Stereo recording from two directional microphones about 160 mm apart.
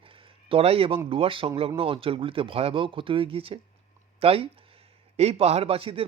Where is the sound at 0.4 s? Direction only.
35° right (ahead or behind).